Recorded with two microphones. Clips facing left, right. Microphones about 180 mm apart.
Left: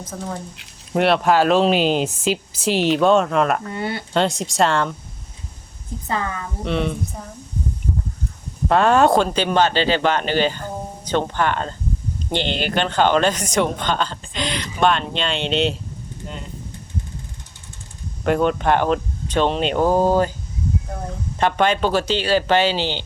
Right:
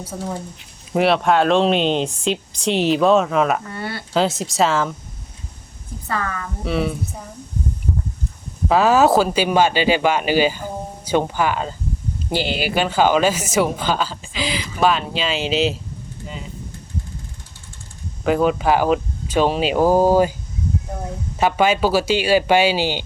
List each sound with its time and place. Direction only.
0.0 s speech: 10° right (ahead or behind)
3.7 s speech: 20° left (ahead or behind)
4.1 s speech: centre (ahead or behind)
6.1 s speech: 20° left (ahead or behind)
6.6 s speech: 5° right (ahead or behind)
8.6 s speech: 5° right (ahead or behind)
18.2 s speech: centre (ahead or behind)